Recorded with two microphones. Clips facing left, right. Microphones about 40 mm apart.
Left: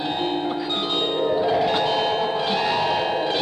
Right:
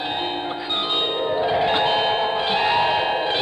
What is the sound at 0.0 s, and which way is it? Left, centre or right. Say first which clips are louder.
Music: left 1 dB; right.